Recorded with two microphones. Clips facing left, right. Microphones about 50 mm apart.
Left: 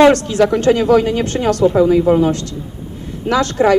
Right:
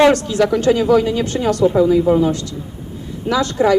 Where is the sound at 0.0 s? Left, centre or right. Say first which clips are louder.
Left 2 dB; left.